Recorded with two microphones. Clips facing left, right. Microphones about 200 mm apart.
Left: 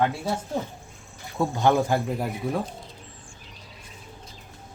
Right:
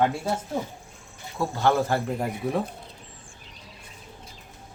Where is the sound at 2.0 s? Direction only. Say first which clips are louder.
Even; centre (ahead or behind).